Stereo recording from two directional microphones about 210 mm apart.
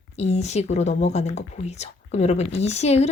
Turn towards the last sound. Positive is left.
turn(degrees=30)  # may be behind; listen again after turning